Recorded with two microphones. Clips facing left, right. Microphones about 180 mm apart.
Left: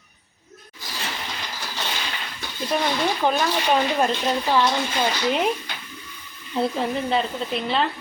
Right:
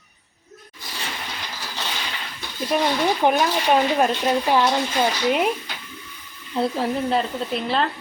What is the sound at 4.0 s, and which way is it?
Speech, 10° right (ahead or behind).